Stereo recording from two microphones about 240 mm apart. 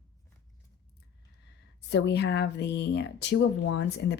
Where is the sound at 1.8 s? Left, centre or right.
Left.